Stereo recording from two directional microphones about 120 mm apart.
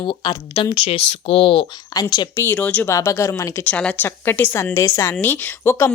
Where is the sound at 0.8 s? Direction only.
55° left (ahead or behind).